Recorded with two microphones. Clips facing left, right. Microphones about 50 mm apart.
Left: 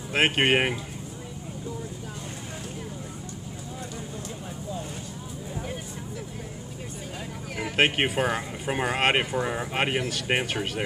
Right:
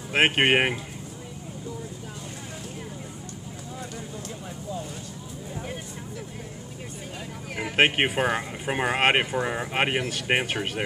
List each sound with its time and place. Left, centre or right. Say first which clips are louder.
0.1 s speech: right 2 dB; right
7.4 s vehicle: right 1 dB; centre
7.7 s speech: right 2 dB; right